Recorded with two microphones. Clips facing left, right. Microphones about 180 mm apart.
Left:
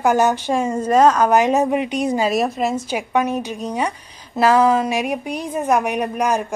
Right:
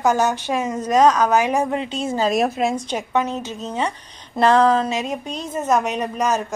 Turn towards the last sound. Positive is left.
turn(degrees=10)  # may be behind; listen again after turning